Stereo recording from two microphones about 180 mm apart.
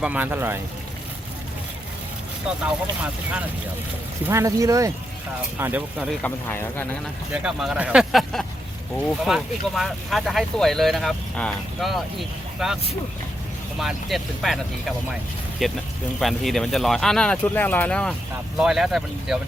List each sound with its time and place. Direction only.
0.0 s speech: 10° right (ahead or behind)
2.6 s speech: 5° right (ahead or behind)
6.2 s speech: 10° left (ahead or behind)
7.3 s speech: 5° right (ahead or behind)